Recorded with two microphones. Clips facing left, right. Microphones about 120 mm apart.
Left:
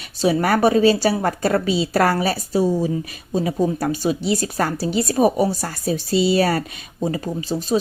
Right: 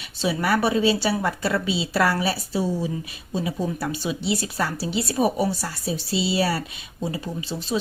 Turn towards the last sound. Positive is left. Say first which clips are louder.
# left 6 dB
turn(degrees=40)  # may be behind; listen again after turning